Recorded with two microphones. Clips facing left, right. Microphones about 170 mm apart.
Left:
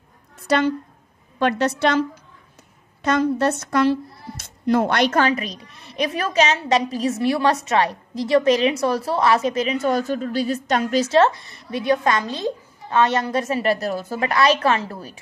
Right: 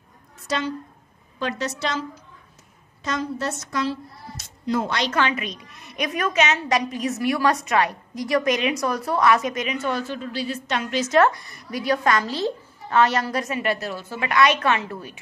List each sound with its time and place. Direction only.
0.5 s a woman's voice: 60° left (ahead or behind)
5.2 s a woman's voice: 35° left (ahead or behind)